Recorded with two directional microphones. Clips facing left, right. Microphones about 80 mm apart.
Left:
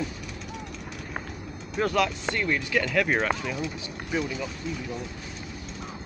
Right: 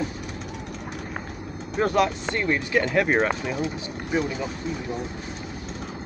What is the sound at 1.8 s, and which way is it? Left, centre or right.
Speech, right.